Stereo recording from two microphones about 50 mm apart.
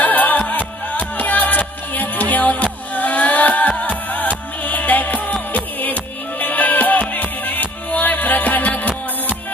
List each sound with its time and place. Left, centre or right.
0.0 s music: left